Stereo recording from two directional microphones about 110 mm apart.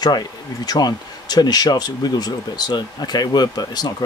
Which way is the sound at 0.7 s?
40° left (ahead or behind).